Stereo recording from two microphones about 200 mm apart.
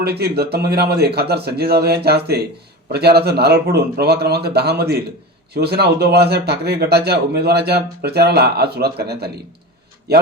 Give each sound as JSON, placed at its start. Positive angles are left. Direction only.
{"t": 0.0, "sound": "speech", "side_deg": -55}